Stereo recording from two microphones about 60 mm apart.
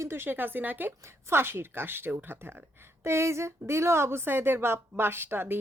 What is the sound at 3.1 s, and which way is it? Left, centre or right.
A woman's voice, right.